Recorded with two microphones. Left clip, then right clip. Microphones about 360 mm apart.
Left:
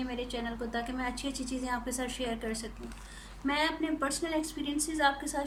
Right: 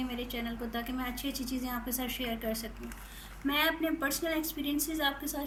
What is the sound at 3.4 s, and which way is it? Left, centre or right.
A woman's voice, centre.